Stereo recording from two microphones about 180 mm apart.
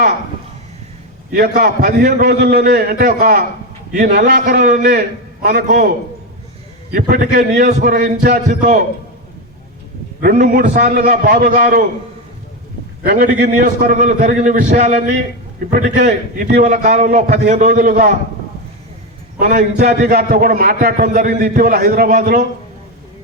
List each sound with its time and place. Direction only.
1.3 s a man's voice: 60° right (ahead or behind)
6.9 s a man's voice: 50° right (ahead or behind)
10.2 s a man's voice: 50° right (ahead or behind)
13.0 s a man's voice: 50° right (ahead or behind)
16.0 s a man's voice: 40° right (ahead or behind)
19.4 s a man's voice: 55° right (ahead or behind)